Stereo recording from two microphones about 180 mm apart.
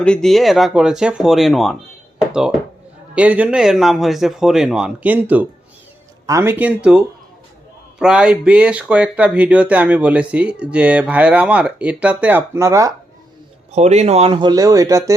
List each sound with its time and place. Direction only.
0.0 s speech: 5° left (ahead or behind); by 12.9 s 15° right (ahead or behind)
13.7 s speech: 40° right (ahead or behind); by 15.1 s 20° right (ahead or behind)